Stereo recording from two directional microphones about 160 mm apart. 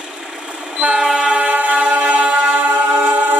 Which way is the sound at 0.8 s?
5° right (ahead or behind).